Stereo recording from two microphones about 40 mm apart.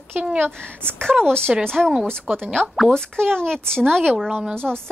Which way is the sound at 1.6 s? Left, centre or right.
Centre.